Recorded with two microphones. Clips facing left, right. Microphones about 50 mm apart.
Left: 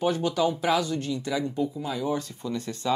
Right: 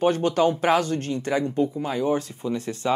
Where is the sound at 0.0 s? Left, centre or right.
Right.